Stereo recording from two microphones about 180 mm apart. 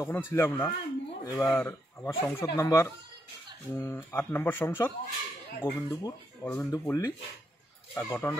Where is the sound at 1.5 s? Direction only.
10° left (ahead or behind).